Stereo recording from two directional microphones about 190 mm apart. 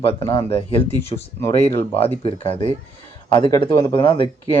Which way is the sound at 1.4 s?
15° left (ahead or behind).